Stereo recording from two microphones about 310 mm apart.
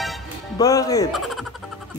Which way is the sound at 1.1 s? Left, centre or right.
Centre.